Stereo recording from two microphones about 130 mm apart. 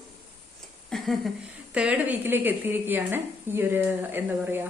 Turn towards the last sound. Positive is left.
turn(degrees=-15)  # may be behind; listen again after turning